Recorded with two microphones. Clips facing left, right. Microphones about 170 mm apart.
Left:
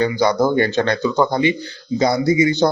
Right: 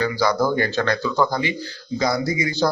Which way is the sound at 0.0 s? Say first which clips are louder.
Left 4 dB; 25° left (ahead or behind).